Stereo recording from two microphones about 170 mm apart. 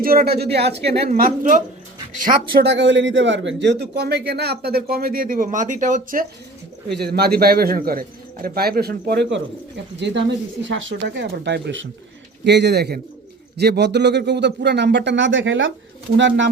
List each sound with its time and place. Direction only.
0.0 s a man's voice: 60° right (ahead or behind)
1.1 s speech: 55° right (ahead or behind)
2.6 s speech: 90° right; by 6.2 s 50° right (ahead or behind)
6.8 s a man's voice: 75° right (ahead or behind); by 16.5 s 90° right